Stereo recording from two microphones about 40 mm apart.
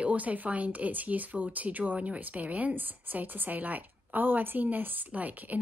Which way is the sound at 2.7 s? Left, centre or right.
Right.